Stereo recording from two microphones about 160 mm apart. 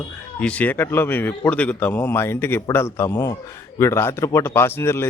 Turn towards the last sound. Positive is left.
turn(degrees=15)  # may be behind; listen again after turning